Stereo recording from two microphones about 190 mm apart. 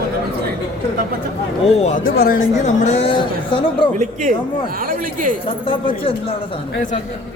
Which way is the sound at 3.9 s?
40° right (ahead or behind).